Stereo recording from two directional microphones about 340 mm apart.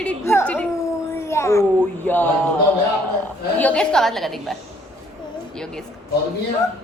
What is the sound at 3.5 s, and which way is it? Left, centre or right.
A woman's voice, centre.